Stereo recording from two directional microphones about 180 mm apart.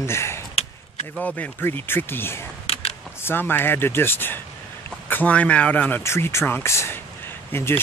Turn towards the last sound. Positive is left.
turn(degrees=10)  # may be behind; listen again after turning